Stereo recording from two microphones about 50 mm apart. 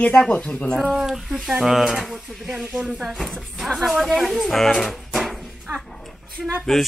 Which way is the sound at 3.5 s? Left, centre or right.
Centre.